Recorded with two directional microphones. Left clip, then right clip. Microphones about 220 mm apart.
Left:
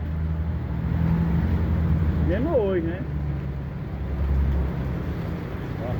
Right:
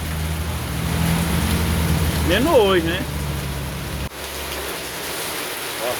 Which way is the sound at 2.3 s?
20° right (ahead or behind).